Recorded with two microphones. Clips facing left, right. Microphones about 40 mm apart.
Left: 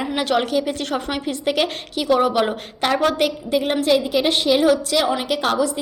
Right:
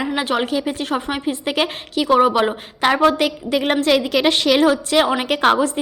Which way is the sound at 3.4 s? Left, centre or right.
Right.